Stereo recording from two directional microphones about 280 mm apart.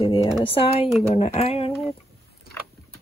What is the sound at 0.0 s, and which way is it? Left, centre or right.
Speech, centre.